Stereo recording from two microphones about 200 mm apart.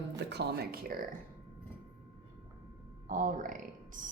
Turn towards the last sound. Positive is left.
turn(degrees=-40)  # may be behind; listen again after turning